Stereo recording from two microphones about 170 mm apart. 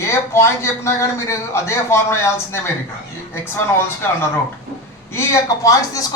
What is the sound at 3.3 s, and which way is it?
A man's voice, 15° left (ahead or behind).